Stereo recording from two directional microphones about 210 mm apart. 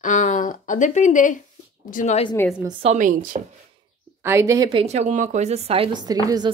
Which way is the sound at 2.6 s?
30° right (ahead or behind).